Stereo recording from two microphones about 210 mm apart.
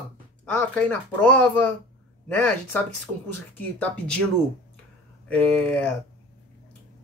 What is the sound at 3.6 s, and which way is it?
Speech, 5° left (ahead or behind).